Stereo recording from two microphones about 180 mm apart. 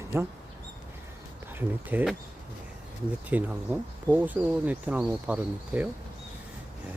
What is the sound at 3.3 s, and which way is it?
Speech, 10° right (ahead or behind).